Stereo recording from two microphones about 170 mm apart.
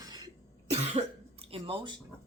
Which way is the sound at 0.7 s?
40° right (ahead or behind).